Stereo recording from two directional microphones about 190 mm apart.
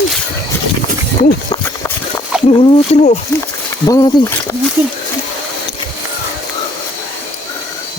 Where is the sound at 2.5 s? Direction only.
30° left (ahead or behind).